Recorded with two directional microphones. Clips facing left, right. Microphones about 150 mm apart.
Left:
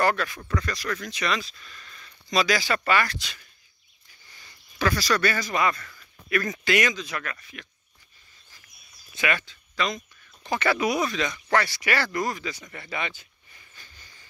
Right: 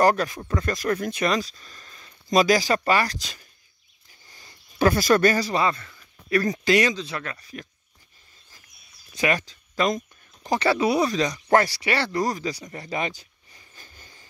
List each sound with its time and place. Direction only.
0.0 s speech: 40° right (ahead or behind)
0.4 s speech: 25° right (ahead or behind)
0.7 s speech: 45° right (ahead or behind)
4.7 s speech: 50° right (ahead or behind); by 6.0 s 25° right (ahead or behind)
6.3 s speech: 35° right (ahead or behind)
9.1 s speech: 40° right (ahead or behind)